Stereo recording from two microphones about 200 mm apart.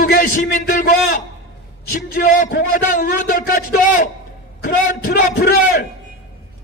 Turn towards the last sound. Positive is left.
turn(degrees=50)  # may be behind; listen again after turning